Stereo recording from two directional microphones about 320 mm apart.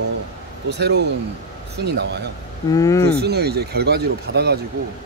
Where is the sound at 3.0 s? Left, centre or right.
Right.